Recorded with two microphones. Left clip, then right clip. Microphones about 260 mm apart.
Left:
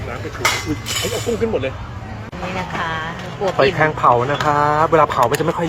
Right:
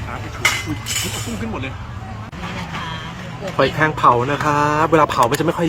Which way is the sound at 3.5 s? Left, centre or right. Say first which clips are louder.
Left 1 dB; right.